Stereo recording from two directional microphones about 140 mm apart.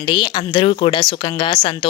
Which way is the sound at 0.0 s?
35° left (ahead or behind).